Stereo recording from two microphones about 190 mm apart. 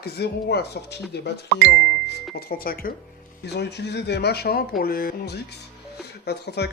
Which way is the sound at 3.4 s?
65° left (ahead or behind).